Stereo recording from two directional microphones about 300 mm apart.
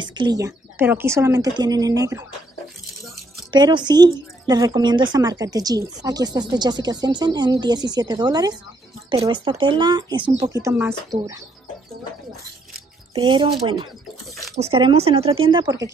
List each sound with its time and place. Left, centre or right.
0.0 s speech: centre
3.5 s speech: centre
13.1 s speech: centre